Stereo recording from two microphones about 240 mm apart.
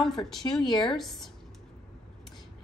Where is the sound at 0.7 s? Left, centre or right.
Centre.